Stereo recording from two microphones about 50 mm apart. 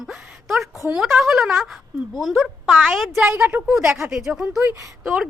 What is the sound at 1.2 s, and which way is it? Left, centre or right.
Speech, centre.